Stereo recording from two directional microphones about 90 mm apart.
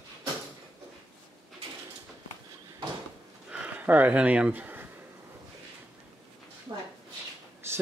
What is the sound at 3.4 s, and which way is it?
Gasp, 15° right (ahead or behind).